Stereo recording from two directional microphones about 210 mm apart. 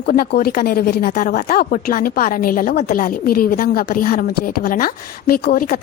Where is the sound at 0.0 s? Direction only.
45° left (ahead or behind).